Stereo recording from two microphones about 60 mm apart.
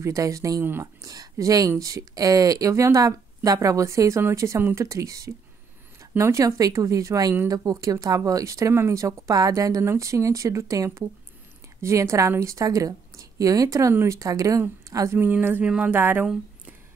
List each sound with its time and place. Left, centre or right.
0.0 s speech: right
1.0 s a sound: right
1.3 s speech: right
4.4 s speech: right
4.7 s speech: right
8.7 s speech: right
9.8 s speech: right
14.9 s speech: right
15.6 s speech: centre
15.9 s speech: right